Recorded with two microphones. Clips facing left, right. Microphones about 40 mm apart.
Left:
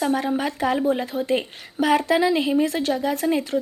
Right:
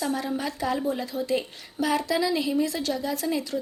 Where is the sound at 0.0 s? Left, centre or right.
Left.